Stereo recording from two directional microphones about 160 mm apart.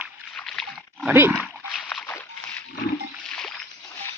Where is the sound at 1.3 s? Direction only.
5° left (ahead or behind).